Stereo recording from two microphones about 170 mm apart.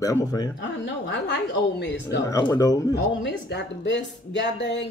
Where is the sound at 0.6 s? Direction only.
90° left.